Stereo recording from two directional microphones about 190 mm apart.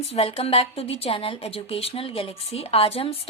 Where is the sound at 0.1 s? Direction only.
30° left (ahead or behind).